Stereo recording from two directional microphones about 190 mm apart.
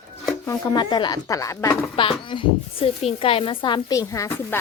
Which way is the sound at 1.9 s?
25° left (ahead or behind).